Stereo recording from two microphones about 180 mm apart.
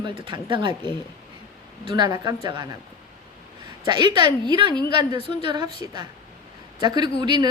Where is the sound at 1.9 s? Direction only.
25° right (ahead or behind).